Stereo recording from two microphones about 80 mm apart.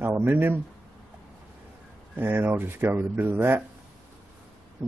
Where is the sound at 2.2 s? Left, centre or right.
Right.